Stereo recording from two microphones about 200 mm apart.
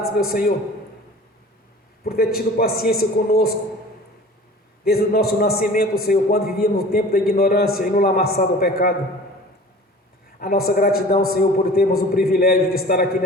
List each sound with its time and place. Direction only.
0.0 s a man's voice: 50° left (ahead or behind)
2.0 s a man's voice: 50° left (ahead or behind)
4.9 s a man's voice: 50° left (ahead or behind)
10.4 s a man's voice: 50° left (ahead or behind)